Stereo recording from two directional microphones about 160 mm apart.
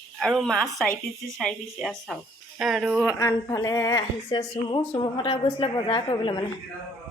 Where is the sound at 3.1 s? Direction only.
20° left (ahead or behind).